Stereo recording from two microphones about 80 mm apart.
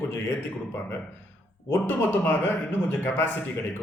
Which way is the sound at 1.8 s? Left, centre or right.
Left.